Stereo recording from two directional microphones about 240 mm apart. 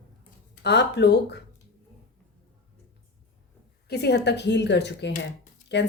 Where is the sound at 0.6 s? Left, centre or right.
Left.